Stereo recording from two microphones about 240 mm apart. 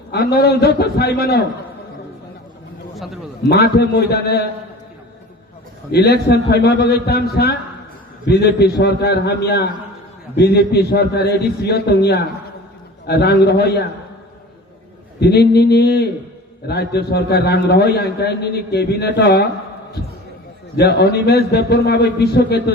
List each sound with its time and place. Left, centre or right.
0.1 s a man's voice: left
2.9 s a sound: centre
3.5 s a man's voice: left
5.9 s a man's voice: left
15.2 s a man's voice: left